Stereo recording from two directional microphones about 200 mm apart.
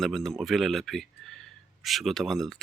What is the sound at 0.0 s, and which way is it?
Speech, centre (ahead or behind).